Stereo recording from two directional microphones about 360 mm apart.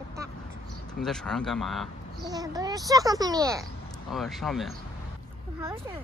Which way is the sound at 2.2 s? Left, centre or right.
Centre.